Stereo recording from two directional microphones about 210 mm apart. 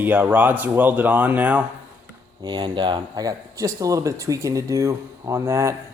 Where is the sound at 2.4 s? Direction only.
20° right (ahead or behind).